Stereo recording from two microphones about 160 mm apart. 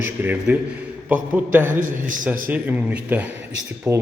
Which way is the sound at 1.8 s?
55° right (ahead or behind).